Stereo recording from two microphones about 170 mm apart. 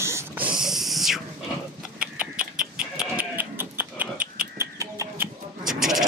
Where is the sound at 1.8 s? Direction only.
5° right (ahead or behind).